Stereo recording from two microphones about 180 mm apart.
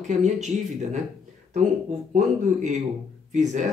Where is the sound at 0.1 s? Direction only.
40° right (ahead or behind).